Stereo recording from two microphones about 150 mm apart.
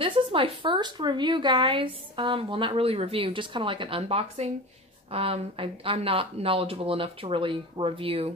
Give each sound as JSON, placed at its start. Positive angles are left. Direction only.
{"t": 0.0, "sound": "speech", "side_deg": -35}